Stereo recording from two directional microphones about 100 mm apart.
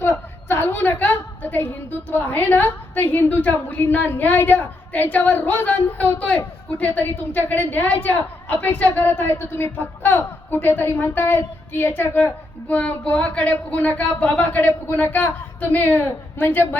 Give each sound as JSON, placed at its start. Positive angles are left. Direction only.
{"t": 0.0, "sound": "a woman's voice", "side_deg": 25}